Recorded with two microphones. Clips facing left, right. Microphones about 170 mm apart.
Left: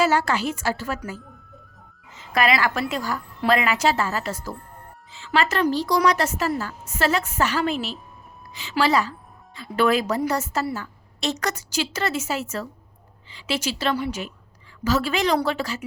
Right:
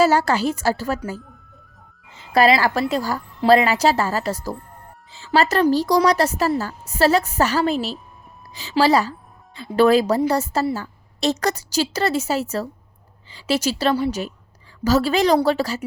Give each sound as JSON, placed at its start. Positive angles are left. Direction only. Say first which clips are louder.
{"t": 0.0, "sound": "a woman's voice", "louder": "right 4 dB", "side_deg": -40}